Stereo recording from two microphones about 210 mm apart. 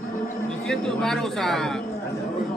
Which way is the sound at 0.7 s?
Centre (ahead or behind).